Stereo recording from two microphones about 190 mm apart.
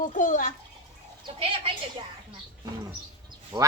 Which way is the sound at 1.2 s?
30° right (ahead or behind).